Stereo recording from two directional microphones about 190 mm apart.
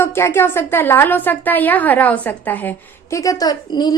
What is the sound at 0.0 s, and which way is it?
A woman's voice, 15° left (ahead or behind).